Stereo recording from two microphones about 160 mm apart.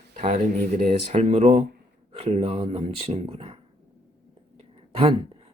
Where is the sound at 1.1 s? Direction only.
45° right (ahead or behind).